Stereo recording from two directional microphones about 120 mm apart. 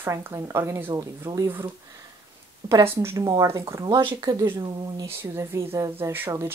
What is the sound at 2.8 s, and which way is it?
Speech, 20° right (ahead or behind).